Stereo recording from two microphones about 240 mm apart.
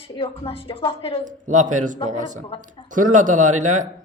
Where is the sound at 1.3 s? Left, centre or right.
Right.